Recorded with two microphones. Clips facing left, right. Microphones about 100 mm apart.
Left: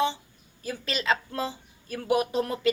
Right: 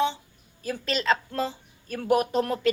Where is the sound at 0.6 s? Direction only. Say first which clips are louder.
Right 3 dB; centre (ahead or behind).